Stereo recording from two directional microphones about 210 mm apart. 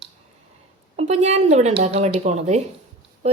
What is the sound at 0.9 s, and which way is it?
Speech, 30° right (ahead or behind).